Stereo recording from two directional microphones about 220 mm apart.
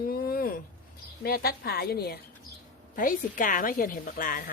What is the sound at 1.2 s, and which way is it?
A woman's voice, 45° left (ahead or behind).